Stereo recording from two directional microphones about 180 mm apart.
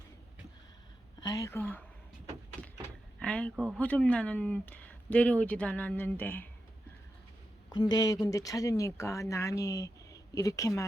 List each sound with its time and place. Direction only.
1.2 s speech: 20° left (ahead or behind)
2.6 s door: 5° left (ahead or behind)
3.2 s a sound: 5° left (ahead or behind)
3.5 s speech: 5° right (ahead or behind)
3.8 s speech: 5° left (ahead or behind)
7.7 s speech: 25° left (ahead or behind)